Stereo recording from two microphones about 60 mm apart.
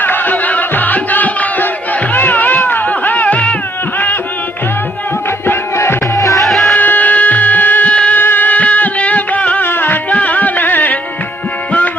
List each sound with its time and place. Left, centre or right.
0.0 s music: left
3.9 s music: left
5.7 s music: left
6.4 s music: centre
6.7 s music: left
9.6 s music: left